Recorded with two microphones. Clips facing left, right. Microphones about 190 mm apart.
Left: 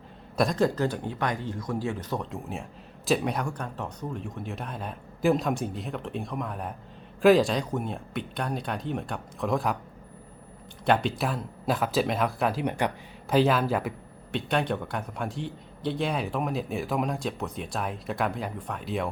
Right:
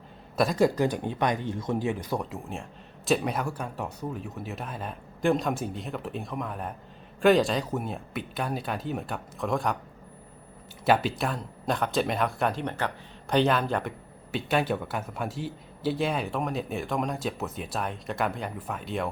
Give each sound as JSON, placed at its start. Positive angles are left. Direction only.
{"t": 0.3, "sound": "a man's voice", "side_deg": -5}
{"t": 10.8, "sound": "a man's voice", "side_deg": -5}
{"t": 13.2, "sound": "a man's voice", "side_deg": 0}